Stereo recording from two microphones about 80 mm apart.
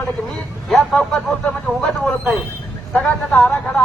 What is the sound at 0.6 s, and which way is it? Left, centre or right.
A man's voice, centre.